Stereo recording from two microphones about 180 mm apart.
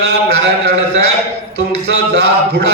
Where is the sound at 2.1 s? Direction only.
65° right (ahead or behind).